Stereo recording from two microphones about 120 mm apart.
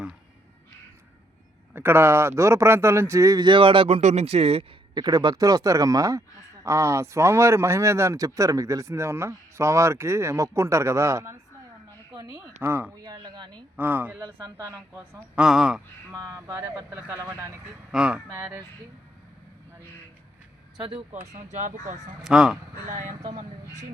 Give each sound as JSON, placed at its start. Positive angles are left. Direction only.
{"t": 1.7, "sound": "speech", "side_deg": -20}
{"t": 3.4, "sound": "speech", "side_deg": -45}
{"t": 4.0, "sound": "speech", "side_deg": -65}
{"t": 4.9, "sound": "speech", "side_deg": -35}
{"t": 13.1, "sound": "speech", "side_deg": -40}
{"t": 13.7, "sound": "speech", "side_deg": -15}
{"t": 15.4, "sound": "speech", "side_deg": -5}
{"t": 16.1, "sound": "speech", "side_deg": -30}
{"t": 17.9, "sound": "speech", "side_deg": -10}
{"t": 21.2, "sound": "speech", "side_deg": -75}
{"t": 22.2, "sound": "speech", "side_deg": -5}